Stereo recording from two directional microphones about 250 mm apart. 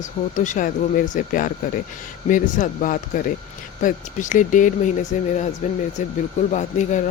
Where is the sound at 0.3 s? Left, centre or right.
Left.